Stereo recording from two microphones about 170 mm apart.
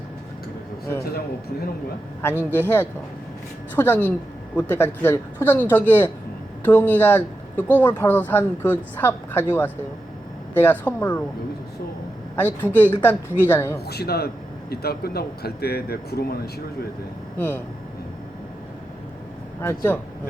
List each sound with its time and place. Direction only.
2.6 s speech: 10° left (ahead or behind)
12.4 s speech: 10° left (ahead or behind)
13.8 s speech: 70° left (ahead or behind)
17.3 s speech: 10° left (ahead or behind)
19.6 s speech: 15° left (ahead or behind)